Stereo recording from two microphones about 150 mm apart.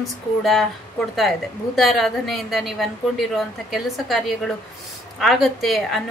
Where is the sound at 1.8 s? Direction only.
Centre (ahead or behind).